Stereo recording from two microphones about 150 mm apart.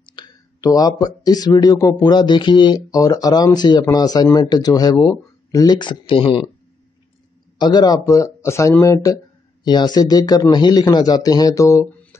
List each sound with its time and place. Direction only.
0.0 s speech: 30° left (ahead or behind)
7.5 s speech: 30° left (ahead or behind)